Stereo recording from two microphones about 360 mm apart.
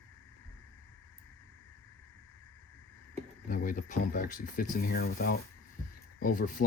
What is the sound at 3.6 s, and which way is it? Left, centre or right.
Speech, left.